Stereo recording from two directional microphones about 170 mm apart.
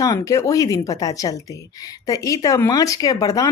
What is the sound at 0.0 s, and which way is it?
Speech, 20° left (ahead or behind).